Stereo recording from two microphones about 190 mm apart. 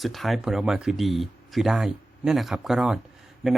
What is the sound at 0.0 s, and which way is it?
Speech, centre (ahead or behind).